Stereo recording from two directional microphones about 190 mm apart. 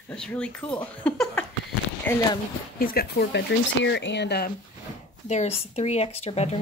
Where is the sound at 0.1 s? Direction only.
5° left (ahead or behind).